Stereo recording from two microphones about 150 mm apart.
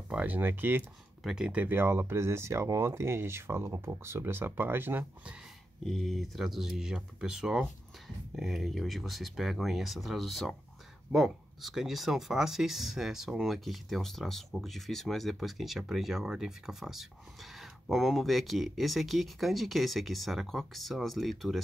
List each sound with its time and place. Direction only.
0.1 s speech: 10° right (ahead or behind)
5.9 s speech: centre (ahead or behind)